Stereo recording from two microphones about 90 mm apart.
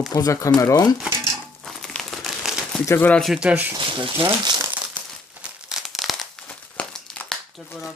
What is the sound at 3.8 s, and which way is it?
Speech, 65° right (ahead or behind).